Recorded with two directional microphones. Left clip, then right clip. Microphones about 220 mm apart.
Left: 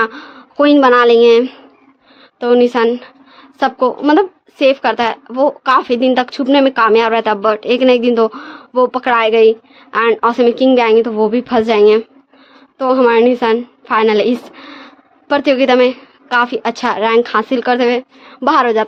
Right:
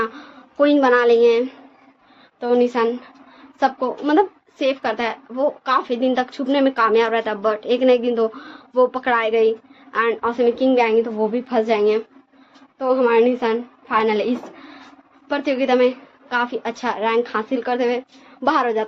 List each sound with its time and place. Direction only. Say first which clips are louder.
0.0 s a woman's voice: left 8 dB; 50° left (ahead or behind)